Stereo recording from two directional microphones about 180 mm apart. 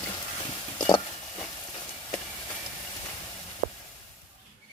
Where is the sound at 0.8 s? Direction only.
25° left (ahead or behind).